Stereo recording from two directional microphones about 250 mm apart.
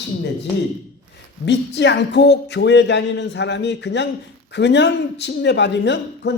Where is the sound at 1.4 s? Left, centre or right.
Left.